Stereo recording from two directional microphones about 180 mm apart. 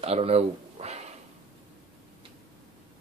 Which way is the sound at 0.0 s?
35° right (ahead or behind).